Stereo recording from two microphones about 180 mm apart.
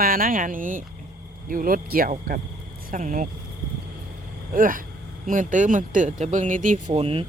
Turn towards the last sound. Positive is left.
turn(degrees=-30)  # may be behind; listen again after turning